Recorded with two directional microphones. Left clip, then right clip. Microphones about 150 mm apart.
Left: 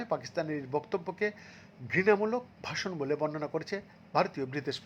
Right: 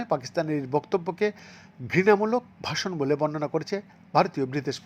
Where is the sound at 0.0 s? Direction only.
25° right (ahead or behind).